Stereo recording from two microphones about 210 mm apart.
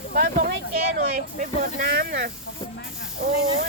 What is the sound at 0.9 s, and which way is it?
Speech, 45° right (ahead or behind).